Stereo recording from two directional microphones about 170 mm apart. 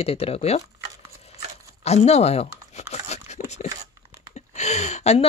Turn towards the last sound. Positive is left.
turn(degrees=40)  # may be behind; listen again after turning